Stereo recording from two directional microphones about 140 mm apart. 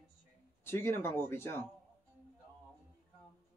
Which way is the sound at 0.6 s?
15° left (ahead or behind).